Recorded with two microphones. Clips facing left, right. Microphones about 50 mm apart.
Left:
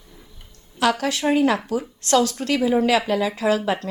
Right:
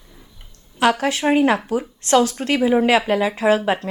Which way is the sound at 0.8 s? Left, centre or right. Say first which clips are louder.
Right 3 dB; right.